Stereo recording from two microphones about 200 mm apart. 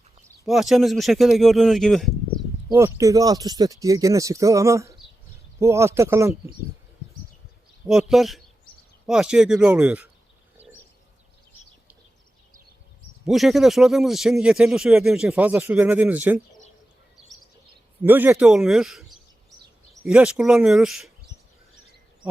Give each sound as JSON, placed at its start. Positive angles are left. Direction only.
{"t": 0.4, "sound": "speech", "side_deg": 0}
{"t": 2.7, "sound": "speech", "side_deg": -15}
{"t": 7.9, "sound": "speech", "side_deg": 0}
{"t": 13.2, "sound": "speech", "side_deg": 0}
{"t": 18.0, "sound": "speech", "side_deg": -10}